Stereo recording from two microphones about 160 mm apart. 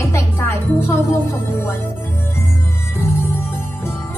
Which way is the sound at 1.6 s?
15° left (ahead or behind).